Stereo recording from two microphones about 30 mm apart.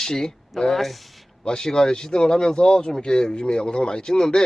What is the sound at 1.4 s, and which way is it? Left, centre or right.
A man's voice, left.